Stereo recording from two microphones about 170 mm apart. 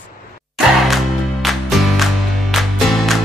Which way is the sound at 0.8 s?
Centre (ahead or behind).